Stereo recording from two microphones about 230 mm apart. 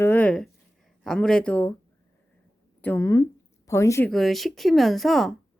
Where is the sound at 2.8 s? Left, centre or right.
Centre.